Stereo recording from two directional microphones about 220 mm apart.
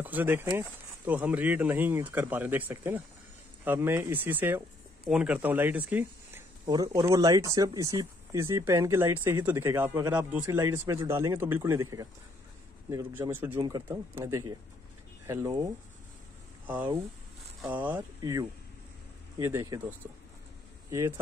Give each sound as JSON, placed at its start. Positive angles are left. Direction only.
{"t": 0.0, "sound": "speech", "side_deg": -10}
{"t": 17.6, "sound": "speech", "side_deg": -5}